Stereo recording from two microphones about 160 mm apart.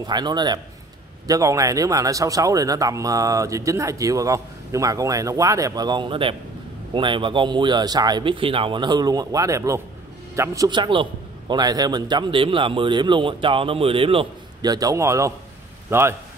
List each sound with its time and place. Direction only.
0.0 s a man's voice: 25° right (ahead or behind)